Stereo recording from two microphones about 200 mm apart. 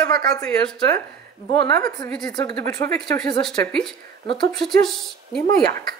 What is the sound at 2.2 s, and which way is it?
Speech, 20° left (ahead or behind).